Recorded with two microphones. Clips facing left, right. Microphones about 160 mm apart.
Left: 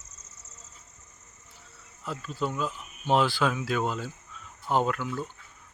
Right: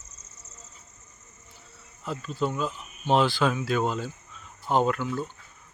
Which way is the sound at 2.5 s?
5° left (ahead or behind).